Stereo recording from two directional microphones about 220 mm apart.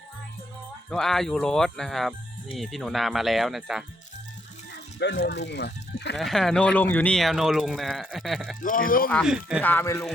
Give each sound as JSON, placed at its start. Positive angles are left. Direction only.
{"t": 0.9, "sound": "speech", "side_deg": 0}
{"t": 4.9, "sound": "speech", "side_deg": 50}
{"t": 6.1, "sound": "speech", "side_deg": 0}
{"t": 8.6, "sound": "speech", "side_deg": 40}
{"t": 9.0, "sound": "speech", "side_deg": 0}
{"t": 9.6, "sound": "speech", "side_deg": 10}